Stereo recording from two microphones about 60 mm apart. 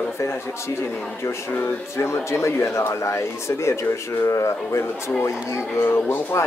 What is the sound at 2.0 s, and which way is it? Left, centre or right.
Speech, left.